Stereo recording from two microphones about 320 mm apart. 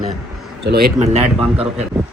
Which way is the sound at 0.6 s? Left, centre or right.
Right.